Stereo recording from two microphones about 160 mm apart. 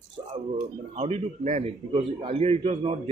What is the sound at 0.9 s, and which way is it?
A man's voice, 40° right (ahead or behind).